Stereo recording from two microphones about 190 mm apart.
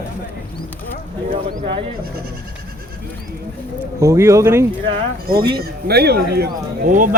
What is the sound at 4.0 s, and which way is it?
Speech, 15° right (ahead or behind).